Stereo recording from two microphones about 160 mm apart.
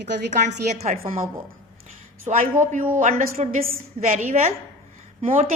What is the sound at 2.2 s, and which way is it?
A woman's voice, 55° right (ahead or behind).